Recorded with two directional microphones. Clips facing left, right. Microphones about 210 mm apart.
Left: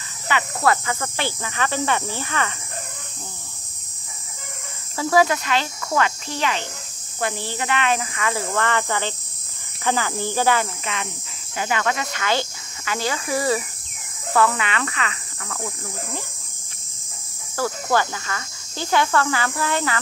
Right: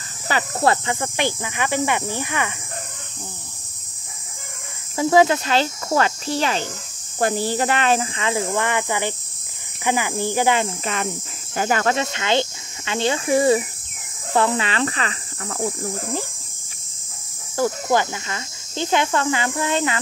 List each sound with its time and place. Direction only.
0.3 s speech: 30° right (ahead or behind); by 2.5 s 15° right (ahead or behind)
4.9 s speech: 25° right (ahead or behind)
11.5 s speech: 40° right (ahead or behind)
17.6 s speech: 15° right (ahead or behind)